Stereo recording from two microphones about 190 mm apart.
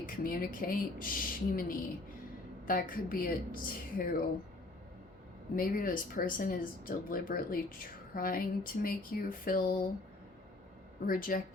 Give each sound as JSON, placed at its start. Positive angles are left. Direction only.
{"t": 0.0, "sound": "speech", "side_deg": 50}
{"t": 5.5, "sound": "speech", "side_deg": 50}
{"t": 11.0, "sound": "speech", "side_deg": 50}